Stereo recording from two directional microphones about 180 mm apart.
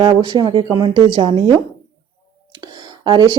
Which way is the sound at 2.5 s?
25° right (ahead or behind).